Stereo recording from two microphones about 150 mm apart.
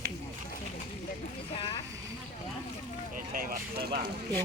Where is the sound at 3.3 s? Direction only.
80° right.